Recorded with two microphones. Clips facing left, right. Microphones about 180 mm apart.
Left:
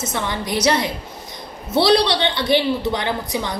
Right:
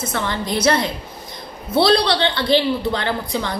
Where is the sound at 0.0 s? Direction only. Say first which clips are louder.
Right 1 dB; 15° left (ahead or behind).